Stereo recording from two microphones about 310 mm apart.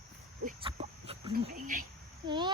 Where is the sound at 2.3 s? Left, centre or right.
Centre.